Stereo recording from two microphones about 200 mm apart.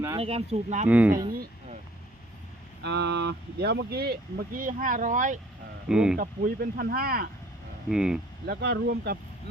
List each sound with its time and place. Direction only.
0.2 s speech: 30° right (ahead or behind)
0.9 s speech: 5° right (ahead or behind)
2.8 s speech: 60° right (ahead or behind); by 5.4 s 40° right (ahead or behind)
5.9 s speech: 5° right (ahead or behind)
6.1 s speech: 45° right (ahead or behind)
7.9 s speech: 5° right (ahead or behind)
8.4 s speech: 55° right (ahead or behind)